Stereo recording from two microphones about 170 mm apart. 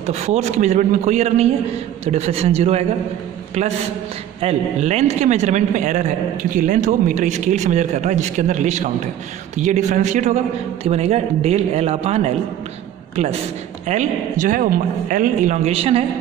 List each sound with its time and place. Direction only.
0.0 s a man's voice: 40° right (ahead or behind)
4.4 s a man's voice: 40° right (ahead or behind)
13.8 s a man's voice: 45° right (ahead or behind)